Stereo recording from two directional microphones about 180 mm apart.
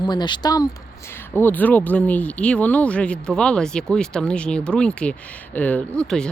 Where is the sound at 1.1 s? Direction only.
10° left (ahead or behind).